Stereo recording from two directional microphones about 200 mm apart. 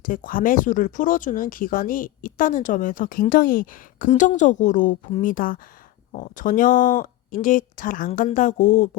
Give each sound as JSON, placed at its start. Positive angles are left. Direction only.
{"t": 0.0, "sound": "speech", "side_deg": 45}